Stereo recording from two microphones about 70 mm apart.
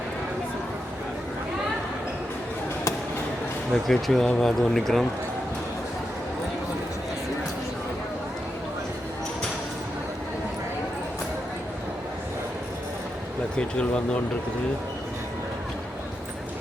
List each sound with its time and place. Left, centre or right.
3.7 s speech: centre
13.6 s speech: centre